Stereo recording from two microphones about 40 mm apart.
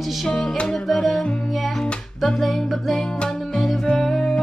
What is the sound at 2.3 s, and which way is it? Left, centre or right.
Speech, centre.